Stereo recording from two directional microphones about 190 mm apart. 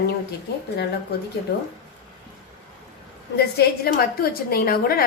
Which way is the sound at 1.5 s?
60° left (ahead or behind).